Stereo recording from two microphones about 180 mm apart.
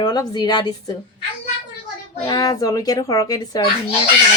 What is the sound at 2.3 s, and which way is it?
A child's voice, 20° left (ahead or behind).